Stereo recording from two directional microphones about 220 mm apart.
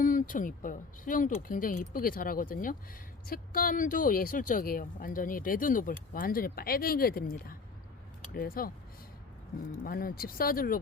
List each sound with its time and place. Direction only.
0.0 s speech: 35° left (ahead or behind)
9.8 s speech: 40° left (ahead or behind)